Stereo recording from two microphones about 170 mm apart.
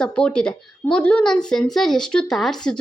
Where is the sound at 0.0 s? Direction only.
5° left (ahead or behind).